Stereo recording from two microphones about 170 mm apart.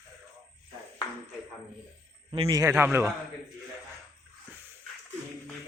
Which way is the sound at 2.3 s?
25° right (ahead or behind).